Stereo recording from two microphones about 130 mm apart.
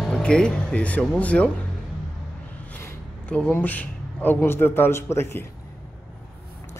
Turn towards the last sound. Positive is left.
turn(degrees=20)  # may be behind; listen again after turning